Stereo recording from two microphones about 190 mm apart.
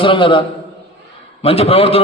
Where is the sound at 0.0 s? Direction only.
25° left (ahead or behind).